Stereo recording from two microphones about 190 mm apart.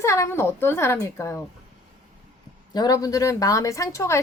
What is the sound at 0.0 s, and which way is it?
A woman's voice, 15° left (ahead or behind).